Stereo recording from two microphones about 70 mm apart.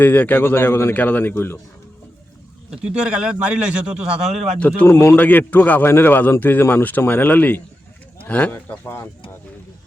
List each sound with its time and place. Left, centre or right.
0.0 s a man's voice: left
2.6 s a man's voice: centre
4.9 s a man's voice: left
5.1 s speech: left